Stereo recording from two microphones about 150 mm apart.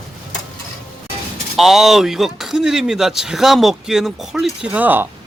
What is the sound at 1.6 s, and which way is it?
Speech, centre (ahead or behind).